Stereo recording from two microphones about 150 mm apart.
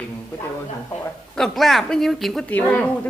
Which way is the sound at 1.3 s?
Centre (ahead or behind).